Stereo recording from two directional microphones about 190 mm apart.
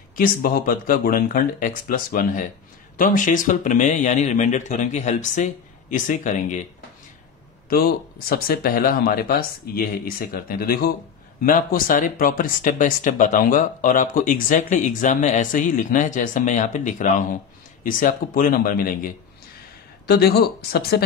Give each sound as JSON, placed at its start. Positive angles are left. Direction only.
{"t": 0.1, "sound": "speech", "side_deg": 50}
{"t": 7.7, "sound": "speech", "side_deg": 50}
{"t": 20.1, "sound": "speech", "side_deg": 55}